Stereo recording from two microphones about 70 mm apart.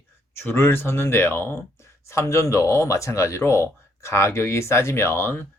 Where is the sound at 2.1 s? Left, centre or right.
Left.